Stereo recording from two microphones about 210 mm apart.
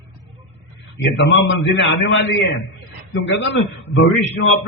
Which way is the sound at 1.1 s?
55° left (ahead or behind).